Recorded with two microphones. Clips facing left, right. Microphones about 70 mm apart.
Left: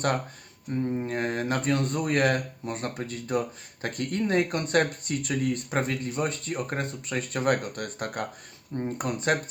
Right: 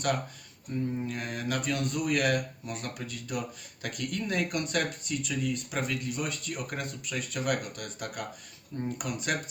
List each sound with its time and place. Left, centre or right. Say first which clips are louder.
0.9 s speech: left 5 dB; left